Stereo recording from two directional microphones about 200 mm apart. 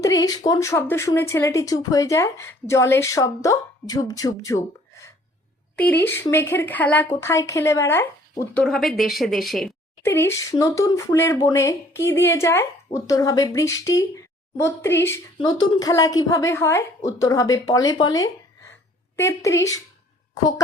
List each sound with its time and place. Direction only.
0.0 s speech: 15° left (ahead or behind)
5.7 s a woman's voice: 5° left (ahead or behind)
10.0 s speech: 10° left (ahead or behind)
15.4 s speech: 25° left (ahead or behind)